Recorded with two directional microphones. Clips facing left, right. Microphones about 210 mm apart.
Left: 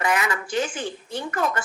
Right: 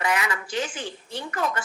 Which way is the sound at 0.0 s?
50° left (ahead or behind).